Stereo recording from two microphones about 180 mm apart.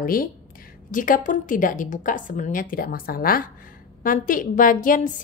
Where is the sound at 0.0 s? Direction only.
50° left (ahead or behind).